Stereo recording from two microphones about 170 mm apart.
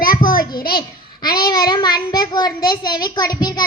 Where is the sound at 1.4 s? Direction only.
25° left (ahead or behind).